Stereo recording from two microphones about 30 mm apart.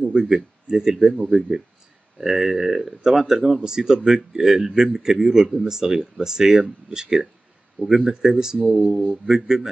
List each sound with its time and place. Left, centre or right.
0.0 s speech: right
7.8 s speech: centre